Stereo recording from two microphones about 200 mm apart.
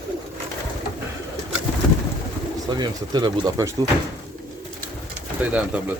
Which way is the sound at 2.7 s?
20° right (ahead or behind).